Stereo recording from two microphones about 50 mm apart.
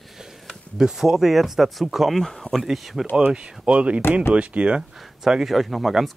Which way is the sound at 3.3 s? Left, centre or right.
Right.